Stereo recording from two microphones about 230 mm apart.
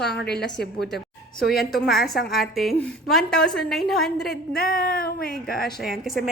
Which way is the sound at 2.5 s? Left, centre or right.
Centre.